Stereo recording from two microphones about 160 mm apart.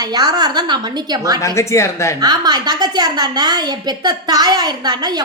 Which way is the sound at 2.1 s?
25° right (ahead or behind).